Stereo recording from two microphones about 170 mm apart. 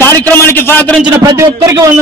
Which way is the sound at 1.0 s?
20° right (ahead or behind).